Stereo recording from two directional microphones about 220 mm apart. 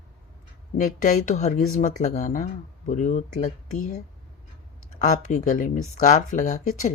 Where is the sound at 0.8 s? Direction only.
35° left (ahead or behind).